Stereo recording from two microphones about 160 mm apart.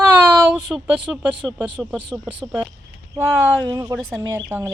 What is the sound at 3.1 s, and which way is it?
Speech, 20° right (ahead or behind).